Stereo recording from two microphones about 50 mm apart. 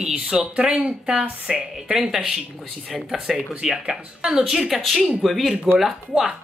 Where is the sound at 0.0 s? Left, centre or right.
Centre.